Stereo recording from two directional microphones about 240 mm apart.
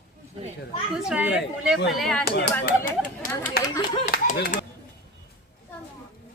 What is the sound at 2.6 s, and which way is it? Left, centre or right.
Speech, left.